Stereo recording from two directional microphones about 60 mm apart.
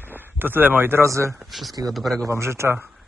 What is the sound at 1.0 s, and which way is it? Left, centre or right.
Speech, right.